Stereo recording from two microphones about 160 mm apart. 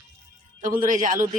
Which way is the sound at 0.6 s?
55° right (ahead or behind).